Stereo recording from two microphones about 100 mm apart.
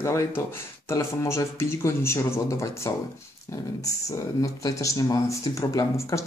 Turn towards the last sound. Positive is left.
turn(degrees=30)  # may be behind; listen again after turning